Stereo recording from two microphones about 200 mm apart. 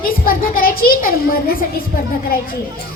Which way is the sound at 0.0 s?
45° left (ahead or behind).